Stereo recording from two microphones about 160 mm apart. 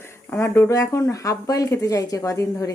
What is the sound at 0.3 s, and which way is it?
A woman's voice, 15° left (ahead or behind).